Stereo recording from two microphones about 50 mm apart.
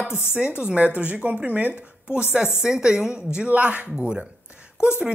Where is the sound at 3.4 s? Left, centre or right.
Right.